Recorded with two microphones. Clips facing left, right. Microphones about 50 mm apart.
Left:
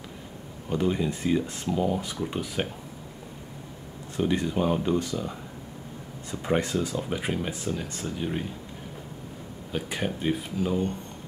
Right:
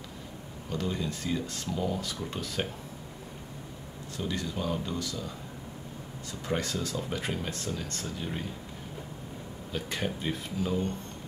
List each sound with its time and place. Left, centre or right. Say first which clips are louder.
0.7 s speech: left 7 dB; left
4.2 s speech: left 8 dB; left
6.4 s speech: left 6 dB; left
9.7 s speech: left 3 dB; centre